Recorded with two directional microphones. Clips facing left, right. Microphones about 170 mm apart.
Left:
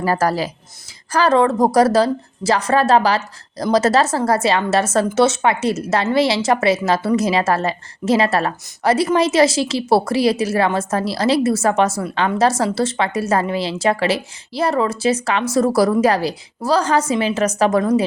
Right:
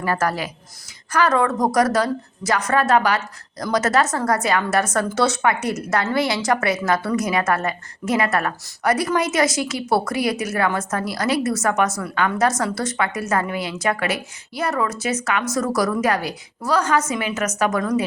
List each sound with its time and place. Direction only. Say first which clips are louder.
0.0 s a woman's voice: left 4 dB; 35° left (ahead or behind)